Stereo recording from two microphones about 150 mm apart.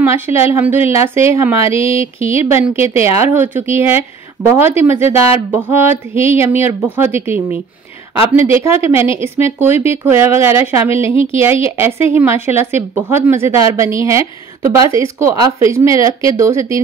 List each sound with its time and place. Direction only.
0.0 s speech: 15° right (ahead or behind)
1.7 s a sound: 40° left (ahead or behind)
2.4 s speech: 15° right (ahead or behind)